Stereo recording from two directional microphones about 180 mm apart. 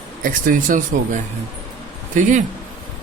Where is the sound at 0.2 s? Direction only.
45° right (ahead or behind).